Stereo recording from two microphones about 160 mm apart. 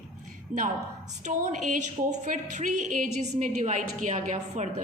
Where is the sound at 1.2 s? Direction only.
50° right (ahead or behind).